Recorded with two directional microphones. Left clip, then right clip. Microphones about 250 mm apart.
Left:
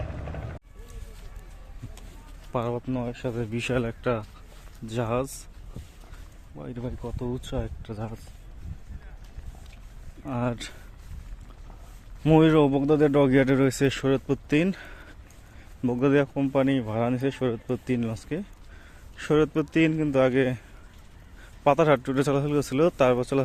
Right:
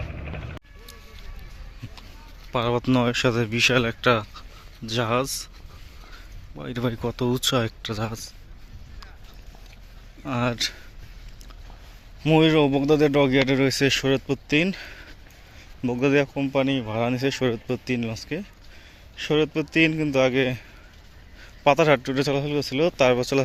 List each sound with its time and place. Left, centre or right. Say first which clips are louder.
2.5 s speech: right 5 dB; centre
2.7 s speech: right 10 dB; centre
3.5 s speech: right 6 dB; centre
6.7 s speech: right 10 dB; centre
10.2 s speech: right 5 dB; centre
12.2 s speech: right 1 dB; centre
17.8 s speech: right 2 dB; centre
21.6 s speech: right 2 dB; centre
23.0 s speech: right 3 dB; centre